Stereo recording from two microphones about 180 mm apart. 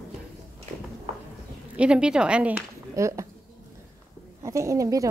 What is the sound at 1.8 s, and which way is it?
A woman's voice, 5° right (ahead or behind).